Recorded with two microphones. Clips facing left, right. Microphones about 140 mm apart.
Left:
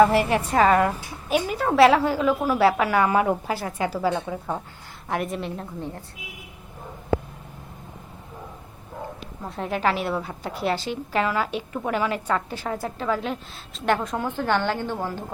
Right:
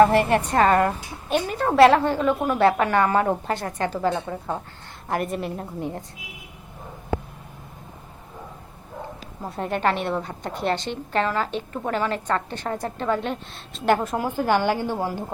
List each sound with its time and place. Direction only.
0.0 s a woman's voice: centre (ahead or behind)
5.5 s a woman's voice: 20° right (ahead or behind)
9.5 s a woman's voice: centre (ahead or behind)